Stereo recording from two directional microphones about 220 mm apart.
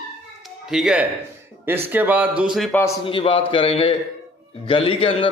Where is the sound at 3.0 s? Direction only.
25° left (ahead or behind).